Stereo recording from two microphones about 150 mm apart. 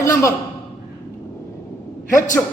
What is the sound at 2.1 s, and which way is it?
Speech, 60° left (ahead or behind).